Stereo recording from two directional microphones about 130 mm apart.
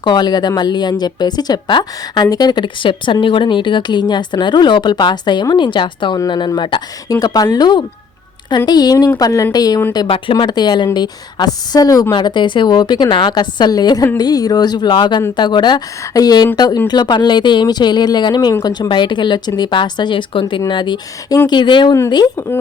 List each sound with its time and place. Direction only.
0.0 s a woman's voice: 35° left (ahead or behind)